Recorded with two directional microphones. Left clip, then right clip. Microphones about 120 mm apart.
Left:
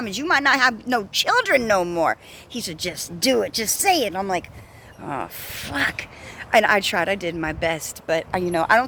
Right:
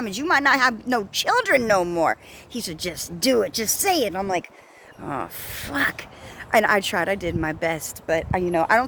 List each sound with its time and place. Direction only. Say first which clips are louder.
0.0 s speech: even; 45° right (ahead or behind)